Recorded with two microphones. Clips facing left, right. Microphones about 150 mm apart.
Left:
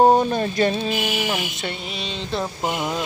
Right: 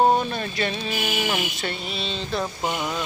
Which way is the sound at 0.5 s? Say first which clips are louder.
Left 8 dB; 40° left (ahead or behind).